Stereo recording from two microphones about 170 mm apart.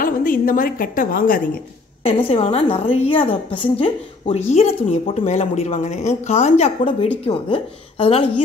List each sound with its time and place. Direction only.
0.0 s a woman's voice: 55° left (ahead or behind)
2.2 s a woman's voice: 40° left (ahead or behind)